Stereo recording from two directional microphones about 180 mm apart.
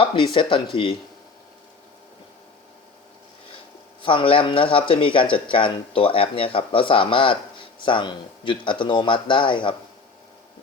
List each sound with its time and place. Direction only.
0.0 s speech: 30° left (ahead or behind)
4.0 s speech: 30° left (ahead or behind)